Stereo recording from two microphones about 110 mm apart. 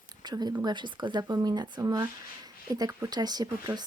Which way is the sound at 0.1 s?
40° right (ahead or behind).